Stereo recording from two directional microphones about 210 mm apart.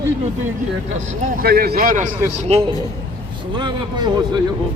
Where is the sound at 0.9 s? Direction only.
35° right (ahead or behind).